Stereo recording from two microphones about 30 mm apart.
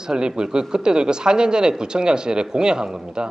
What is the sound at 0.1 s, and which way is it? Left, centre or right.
Speech, right.